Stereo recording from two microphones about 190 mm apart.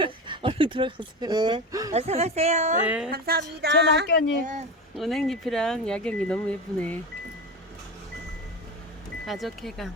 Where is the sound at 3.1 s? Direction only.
55° right (ahead or behind).